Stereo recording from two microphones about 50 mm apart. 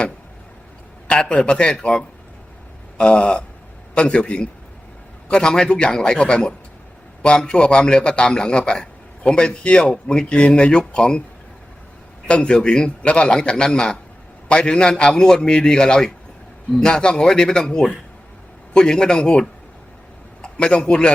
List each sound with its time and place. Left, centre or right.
1.0 s a man's voice: centre
12.3 s a man's voice: centre